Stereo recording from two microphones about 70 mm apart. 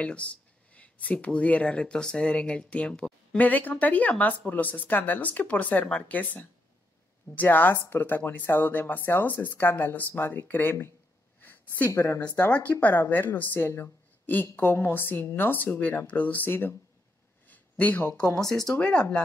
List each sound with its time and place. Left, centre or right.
0.0 s speech: centre
11.9 s a woman's voice: left
12.4 s speech: left